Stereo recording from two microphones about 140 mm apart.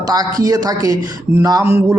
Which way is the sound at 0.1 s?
25° right (ahead or behind).